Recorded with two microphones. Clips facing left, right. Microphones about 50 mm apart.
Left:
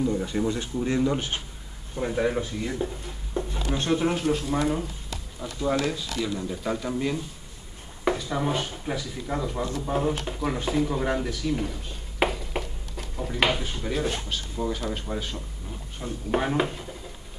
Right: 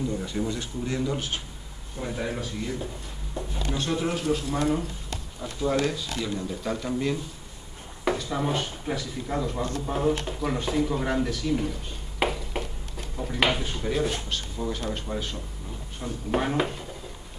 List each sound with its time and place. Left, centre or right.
0.0 s speech: centre
12.2 s a sound: centre
14.9 s speech: centre